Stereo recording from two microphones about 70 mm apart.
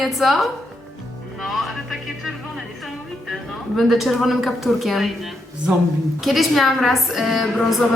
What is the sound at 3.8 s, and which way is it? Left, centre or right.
Speech, centre.